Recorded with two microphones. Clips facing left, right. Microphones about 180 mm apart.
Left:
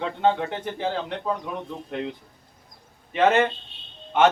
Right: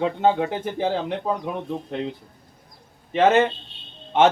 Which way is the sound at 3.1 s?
25° right (ahead or behind).